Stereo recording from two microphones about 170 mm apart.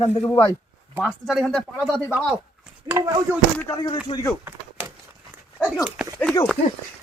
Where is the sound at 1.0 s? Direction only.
Centre (ahead or behind).